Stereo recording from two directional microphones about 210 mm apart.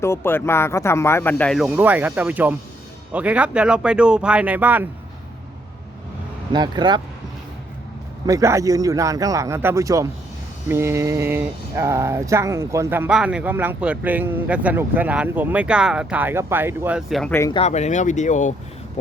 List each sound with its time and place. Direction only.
0.0 s speech: 10° left (ahead or behind); by 4.9 s 10° right (ahead or behind)
6.5 s speech: 20° right (ahead or behind)
8.3 s speech: 15° right (ahead or behind); by 17.3 s centre (ahead or behind)
17.5 s speech: 30° left (ahead or behind)